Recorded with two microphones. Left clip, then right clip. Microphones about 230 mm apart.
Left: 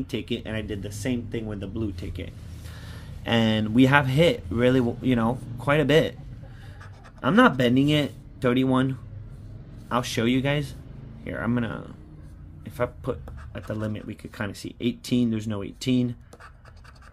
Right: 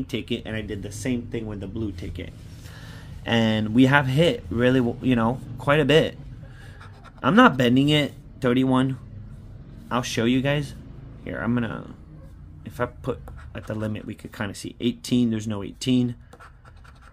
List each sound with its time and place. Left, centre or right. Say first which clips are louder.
0.0 s speech: right 1 dB; centre
7.2 s speech: right 2 dB; centre